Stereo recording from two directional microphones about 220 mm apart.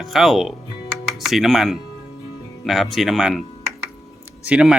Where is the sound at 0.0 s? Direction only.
Centre (ahead or behind).